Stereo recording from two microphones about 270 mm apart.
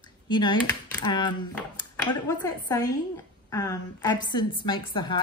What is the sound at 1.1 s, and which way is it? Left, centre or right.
A woman's voice, centre.